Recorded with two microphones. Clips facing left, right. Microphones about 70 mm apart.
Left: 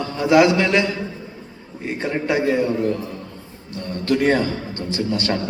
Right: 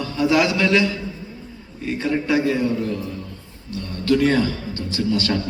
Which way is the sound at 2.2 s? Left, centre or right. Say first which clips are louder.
Left 3 dB; left.